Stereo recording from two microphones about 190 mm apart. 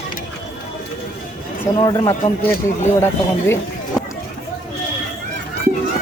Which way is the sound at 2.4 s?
50° left (ahead or behind).